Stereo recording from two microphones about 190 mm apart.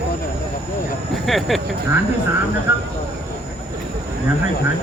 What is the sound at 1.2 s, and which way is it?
Speech, centre (ahead or behind).